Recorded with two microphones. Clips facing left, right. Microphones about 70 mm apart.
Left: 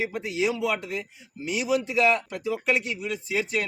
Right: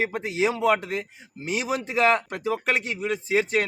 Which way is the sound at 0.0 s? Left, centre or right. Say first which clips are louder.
Right 2 dB; right.